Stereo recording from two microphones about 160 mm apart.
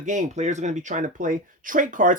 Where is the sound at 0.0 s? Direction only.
50° right (ahead or behind).